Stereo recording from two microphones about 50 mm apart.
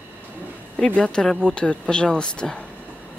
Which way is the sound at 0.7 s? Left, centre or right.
Centre.